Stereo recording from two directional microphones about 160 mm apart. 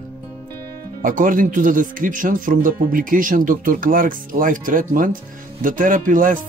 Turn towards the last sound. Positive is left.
turn(degrees=-55)  # may be behind; listen again after turning